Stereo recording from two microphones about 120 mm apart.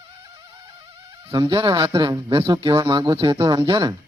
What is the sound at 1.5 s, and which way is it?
A man's voice, 45° right (ahead or behind).